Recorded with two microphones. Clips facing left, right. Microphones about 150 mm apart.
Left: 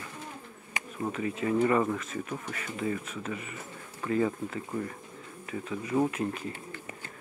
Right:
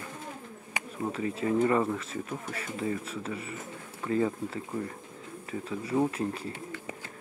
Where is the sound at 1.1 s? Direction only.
30° right (ahead or behind).